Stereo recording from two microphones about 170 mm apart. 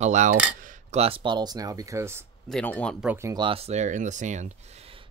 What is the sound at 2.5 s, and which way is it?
Speech, 5° left (ahead or behind).